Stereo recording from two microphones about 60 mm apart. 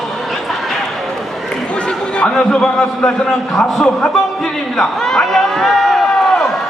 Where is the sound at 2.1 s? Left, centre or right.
Centre.